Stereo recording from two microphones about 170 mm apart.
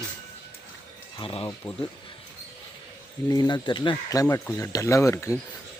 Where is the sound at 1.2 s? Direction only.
30° left (ahead or behind).